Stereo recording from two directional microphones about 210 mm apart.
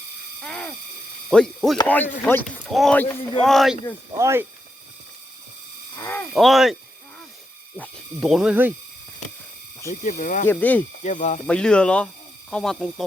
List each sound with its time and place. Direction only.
0.4 s a sound: 5° left (ahead or behind)
1.3 s speech: centre (ahead or behind)
4.2 s speech: 10° right (ahead or behind)
6.0 s a sound: 10° left (ahead or behind)
6.3 s speech: centre (ahead or behind)
7.8 s speech: centre (ahead or behind)
9.9 s speech: 40° left (ahead or behind)
10.4 s speech: 10° left (ahead or behind)
11.0 s speech: 35° left (ahead or behind)
11.4 s speech: 5° left (ahead or behind)